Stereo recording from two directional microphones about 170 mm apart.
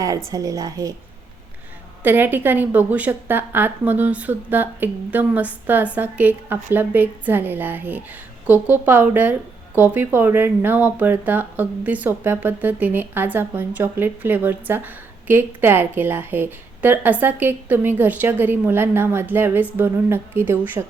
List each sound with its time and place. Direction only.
0.3 s a woman's voice: 20° right (ahead or behind)
2.0 s speech: 10° right (ahead or behind)